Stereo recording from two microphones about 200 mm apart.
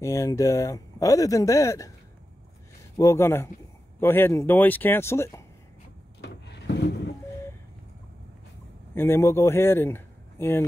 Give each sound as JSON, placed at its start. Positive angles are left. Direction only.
{"t": 0.0, "sound": "speech", "side_deg": 15}
{"t": 3.0, "sound": "speech", "side_deg": 15}
{"t": 6.2, "sound": "a sound", "side_deg": 60}
{"t": 8.9, "sound": "speech", "side_deg": 10}